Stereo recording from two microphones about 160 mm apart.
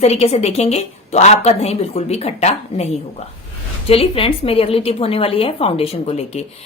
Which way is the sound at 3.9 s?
35° left (ahead or behind).